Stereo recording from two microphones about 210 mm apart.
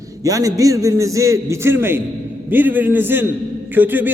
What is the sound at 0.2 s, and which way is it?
A man's voice, 15° right (ahead or behind).